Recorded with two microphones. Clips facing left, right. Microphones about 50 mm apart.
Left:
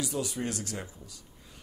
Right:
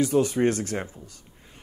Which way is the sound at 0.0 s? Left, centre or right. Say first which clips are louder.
Right 12 dB; right.